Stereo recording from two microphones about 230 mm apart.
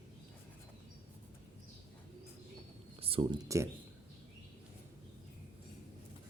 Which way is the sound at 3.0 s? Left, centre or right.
Right.